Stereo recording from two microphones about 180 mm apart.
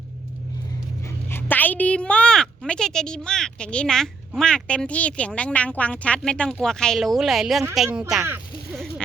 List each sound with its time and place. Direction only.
1.3 s a woman's voice: 10° left (ahead or behind)